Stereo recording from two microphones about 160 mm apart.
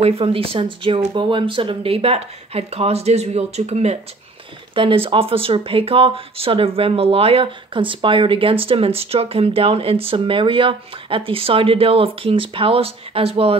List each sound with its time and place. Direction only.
0.0 s speech: 35° right (ahead or behind)